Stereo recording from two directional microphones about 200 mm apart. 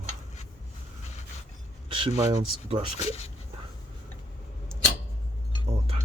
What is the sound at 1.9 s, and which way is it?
Speech, 25° right (ahead or behind).